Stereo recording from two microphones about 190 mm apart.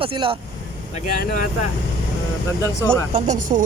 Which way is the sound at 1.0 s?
45° left (ahead or behind).